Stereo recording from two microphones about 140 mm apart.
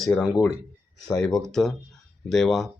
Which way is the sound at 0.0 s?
Centre (ahead or behind).